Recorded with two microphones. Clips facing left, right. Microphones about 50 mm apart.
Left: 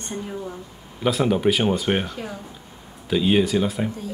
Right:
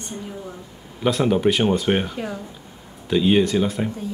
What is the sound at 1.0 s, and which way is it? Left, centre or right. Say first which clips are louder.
Speech: right 1 dB; centre.